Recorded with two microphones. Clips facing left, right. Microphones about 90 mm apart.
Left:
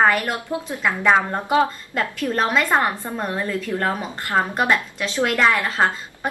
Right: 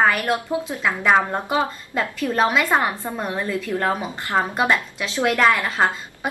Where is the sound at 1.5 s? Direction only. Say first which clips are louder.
Left 7 dB; 15° right (ahead or behind).